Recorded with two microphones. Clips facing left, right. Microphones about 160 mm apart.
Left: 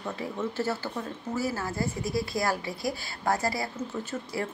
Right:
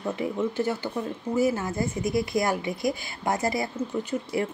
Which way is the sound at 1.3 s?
20° right (ahead or behind).